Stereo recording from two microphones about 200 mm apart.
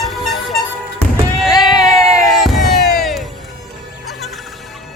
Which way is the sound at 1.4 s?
20° left (ahead or behind).